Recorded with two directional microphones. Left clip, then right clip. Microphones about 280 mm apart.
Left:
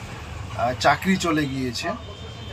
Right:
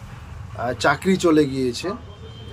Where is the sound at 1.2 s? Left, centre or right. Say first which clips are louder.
Right 7 dB; centre.